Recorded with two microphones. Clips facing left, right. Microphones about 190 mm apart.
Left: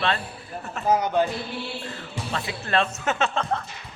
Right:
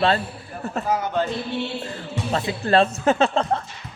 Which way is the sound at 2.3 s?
30° right (ahead or behind).